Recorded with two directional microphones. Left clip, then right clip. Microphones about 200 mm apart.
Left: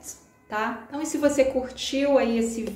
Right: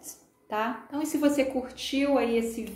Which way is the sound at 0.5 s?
25° right (ahead or behind).